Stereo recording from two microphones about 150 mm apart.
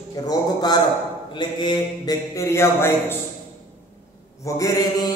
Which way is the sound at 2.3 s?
15° left (ahead or behind).